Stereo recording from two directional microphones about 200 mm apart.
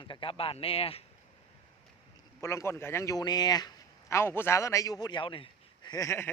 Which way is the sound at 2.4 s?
15° left (ahead or behind).